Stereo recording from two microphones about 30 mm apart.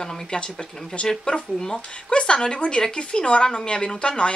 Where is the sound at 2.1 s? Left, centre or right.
Left.